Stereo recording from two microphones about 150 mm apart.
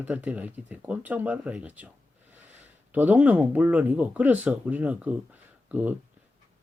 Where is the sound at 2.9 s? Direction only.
10° right (ahead or behind).